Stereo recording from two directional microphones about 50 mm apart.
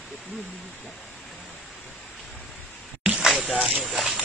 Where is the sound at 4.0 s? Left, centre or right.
Centre.